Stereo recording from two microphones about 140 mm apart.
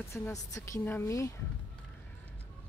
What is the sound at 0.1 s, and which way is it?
Speech, 20° left (ahead or behind).